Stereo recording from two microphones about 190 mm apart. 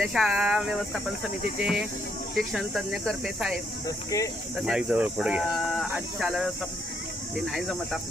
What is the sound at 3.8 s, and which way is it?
Speech, 15° left (ahead or behind).